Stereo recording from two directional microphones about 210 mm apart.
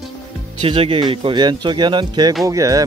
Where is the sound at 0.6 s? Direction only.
25° right (ahead or behind).